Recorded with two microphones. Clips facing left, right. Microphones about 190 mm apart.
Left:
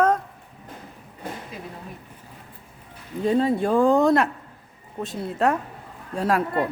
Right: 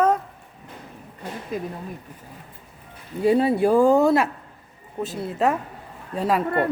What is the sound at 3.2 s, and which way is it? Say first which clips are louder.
A woman's voice: right 3 dB; 10° right (ahead or behind).